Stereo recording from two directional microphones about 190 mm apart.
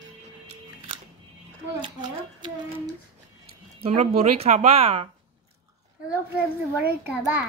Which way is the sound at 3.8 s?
35° right (ahead or behind).